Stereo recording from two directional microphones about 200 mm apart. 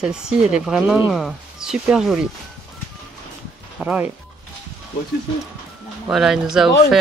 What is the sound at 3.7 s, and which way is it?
Speech, 5° right (ahead or behind).